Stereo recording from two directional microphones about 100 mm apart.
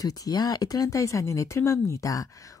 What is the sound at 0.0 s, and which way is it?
Speech, 40° left (ahead or behind).